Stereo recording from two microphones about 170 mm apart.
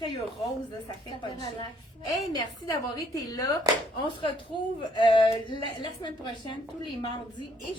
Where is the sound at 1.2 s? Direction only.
25° left (ahead or behind).